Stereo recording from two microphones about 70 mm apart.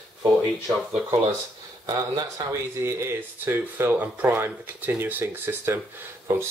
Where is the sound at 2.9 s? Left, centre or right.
Right.